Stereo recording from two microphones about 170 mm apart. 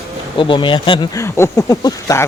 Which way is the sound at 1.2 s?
15° left (ahead or behind).